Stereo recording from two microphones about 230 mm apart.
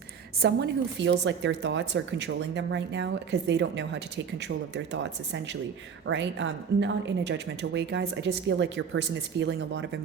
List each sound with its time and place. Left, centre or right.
0.4 s a woman's voice: right